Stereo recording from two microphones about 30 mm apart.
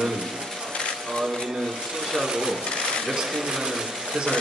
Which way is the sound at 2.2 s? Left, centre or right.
Centre.